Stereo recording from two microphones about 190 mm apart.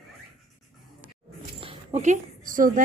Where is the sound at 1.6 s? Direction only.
30° right (ahead or behind).